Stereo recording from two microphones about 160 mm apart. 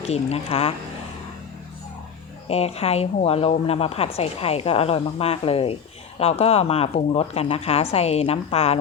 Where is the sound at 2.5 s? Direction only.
40° left (ahead or behind).